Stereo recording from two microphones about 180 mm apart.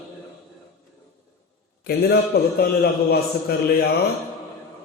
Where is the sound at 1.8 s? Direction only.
60° left (ahead or behind).